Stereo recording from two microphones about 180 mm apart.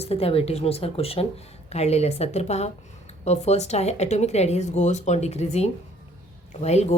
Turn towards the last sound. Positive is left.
turn(degrees=35)  # may be behind; listen again after turning